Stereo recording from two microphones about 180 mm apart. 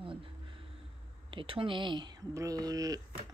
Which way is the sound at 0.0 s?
30° right (ahead or behind).